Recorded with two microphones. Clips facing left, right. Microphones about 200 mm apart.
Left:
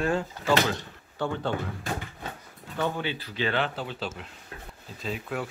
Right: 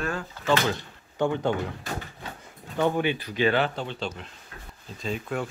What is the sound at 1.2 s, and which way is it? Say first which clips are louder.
Speech: right 5 dB; 15° right (ahead or behind).